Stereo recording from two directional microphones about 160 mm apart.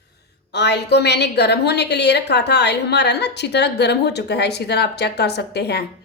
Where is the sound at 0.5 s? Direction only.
90° left.